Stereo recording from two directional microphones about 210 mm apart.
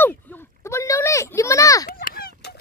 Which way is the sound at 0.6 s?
15° left (ahead or behind).